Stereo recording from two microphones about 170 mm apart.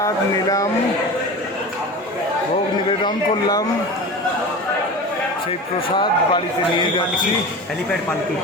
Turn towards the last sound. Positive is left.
turn(degrees=30)  # may be behind; listen again after turning